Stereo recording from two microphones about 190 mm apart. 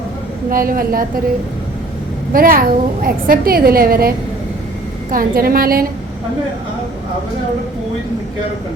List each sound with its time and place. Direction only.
0.5 s a woman's voice: 50° right (ahead or behind)
2.3 s a woman's voice: 50° right (ahead or behind)
5.1 s a woman's voice: 50° right (ahead or behind)